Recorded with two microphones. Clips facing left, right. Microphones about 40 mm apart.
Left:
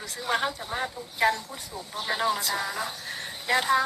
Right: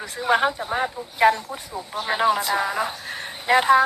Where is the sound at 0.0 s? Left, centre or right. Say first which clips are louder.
Right 7 dB; right.